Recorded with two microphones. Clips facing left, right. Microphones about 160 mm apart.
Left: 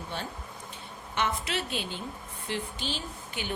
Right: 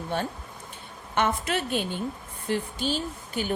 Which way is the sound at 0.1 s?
50° right (ahead or behind).